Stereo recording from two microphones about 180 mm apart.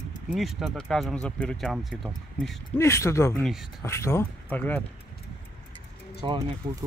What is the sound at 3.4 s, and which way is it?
Speech, centre (ahead or behind).